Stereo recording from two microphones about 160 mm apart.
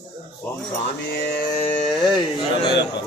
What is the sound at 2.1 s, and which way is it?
Speech, 30° left (ahead or behind).